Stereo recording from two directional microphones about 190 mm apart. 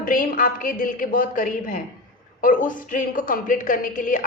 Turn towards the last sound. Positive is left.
turn(degrees=45)  # may be behind; listen again after turning